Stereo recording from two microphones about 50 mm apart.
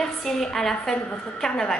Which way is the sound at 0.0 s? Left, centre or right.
Centre.